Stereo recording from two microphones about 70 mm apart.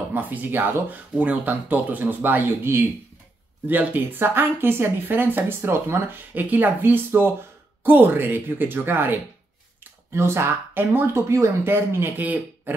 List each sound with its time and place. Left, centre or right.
0.1 s speech: right
11.2 s speech: right